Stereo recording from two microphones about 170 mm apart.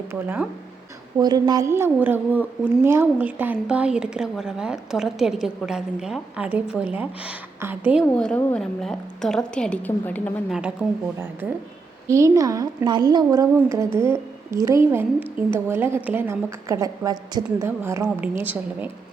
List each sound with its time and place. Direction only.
0.1 s a woman's voice: 10° right (ahead or behind)
1.2 s a woman's voice: 25° right (ahead or behind)
8.0 s a woman's voice: 5° left (ahead or behind)
10.5 s a woman's voice: 5° right (ahead or behind)